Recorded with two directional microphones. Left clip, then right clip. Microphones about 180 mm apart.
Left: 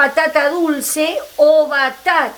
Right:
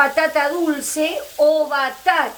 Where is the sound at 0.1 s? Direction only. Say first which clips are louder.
Left 3 dB; 35° left (ahead or behind).